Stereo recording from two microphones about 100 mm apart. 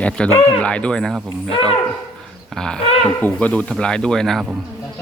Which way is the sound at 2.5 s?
5° left (ahead or behind).